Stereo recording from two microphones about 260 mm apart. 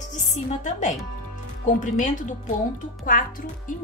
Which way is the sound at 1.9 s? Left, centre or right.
Left.